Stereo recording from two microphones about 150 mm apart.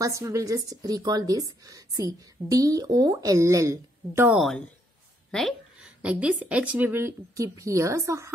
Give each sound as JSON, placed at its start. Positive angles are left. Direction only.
{"t": 0.0, "sound": "a woman's voice", "side_deg": -20}
{"t": 4.4, "sound": "speech", "side_deg": 0}
{"t": 5.3, "sound": "a sound", "side_deg": 0}
{"t": 6.0, "sound": "speech", "side_deg": -10}